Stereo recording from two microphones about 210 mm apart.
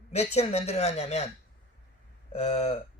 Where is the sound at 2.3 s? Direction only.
30° left (ahead or behind).